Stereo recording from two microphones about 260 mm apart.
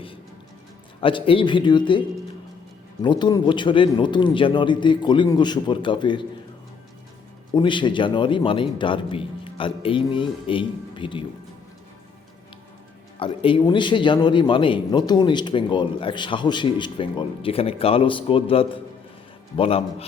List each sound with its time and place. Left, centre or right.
1.0 s a man's voice: centre
7.5 s a man's voice: centre
13.1 s a man's voice: centre